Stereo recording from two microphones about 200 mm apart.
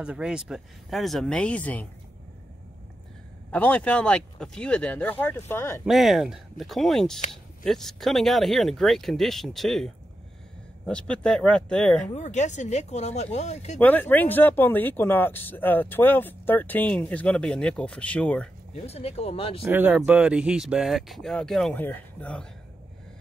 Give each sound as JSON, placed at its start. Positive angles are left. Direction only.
{"t": 0.0, "sound": "speech", "side_deg": -5}
{"t": 3.5, "sound": "speech", "side_deg": 5}
{"t": 5.9, "sound": "speech", "side_deg": 0}
{"t": 12.1, "sound": "speech", "side_deg": 35}
{"t": 13.7, "sound": "speech", "side_deg": 10}
{"t": 18.9, "sound": "speech", "side_deg": 30}
{"t": 19.7, "sound": "speech", "side_deg": -10}